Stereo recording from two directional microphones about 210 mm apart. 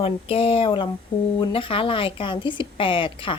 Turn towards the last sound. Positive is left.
turn(degrees=25)  # may be behind; listen again after turning